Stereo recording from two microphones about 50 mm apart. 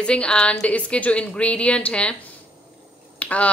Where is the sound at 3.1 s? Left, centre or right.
Left.